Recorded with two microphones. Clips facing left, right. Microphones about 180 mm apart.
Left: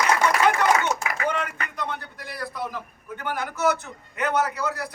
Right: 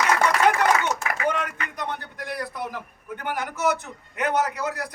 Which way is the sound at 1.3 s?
15° right (ahead or behind).